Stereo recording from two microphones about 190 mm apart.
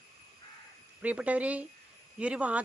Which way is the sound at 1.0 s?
5° right (ahead or behind).